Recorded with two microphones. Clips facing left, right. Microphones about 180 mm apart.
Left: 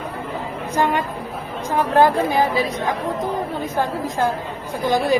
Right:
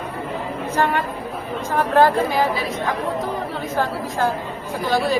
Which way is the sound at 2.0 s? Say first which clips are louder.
Even; 15° left (ahead or behind).